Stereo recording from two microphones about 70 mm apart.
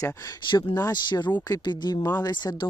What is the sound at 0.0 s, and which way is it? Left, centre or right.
Speech, left.